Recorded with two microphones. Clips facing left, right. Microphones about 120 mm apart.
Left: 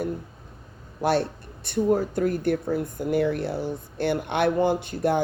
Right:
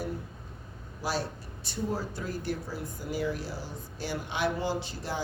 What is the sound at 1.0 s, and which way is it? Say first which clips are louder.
Speech: left 9 dB; 60° left (ahead or behind).